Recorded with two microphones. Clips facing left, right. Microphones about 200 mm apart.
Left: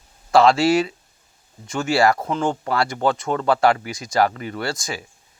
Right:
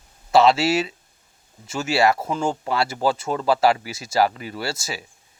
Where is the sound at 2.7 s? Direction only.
25° right (ahead or behind).